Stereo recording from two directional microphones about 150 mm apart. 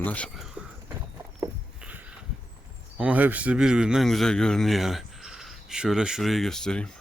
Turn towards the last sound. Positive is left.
turn(degrees=5)  # may be behind; listen again after turning